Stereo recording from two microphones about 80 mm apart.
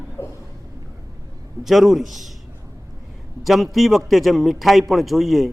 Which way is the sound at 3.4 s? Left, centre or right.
Centre.